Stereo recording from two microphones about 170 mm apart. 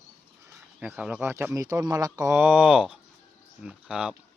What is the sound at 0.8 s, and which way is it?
Speech, 5° right (ahead or behind).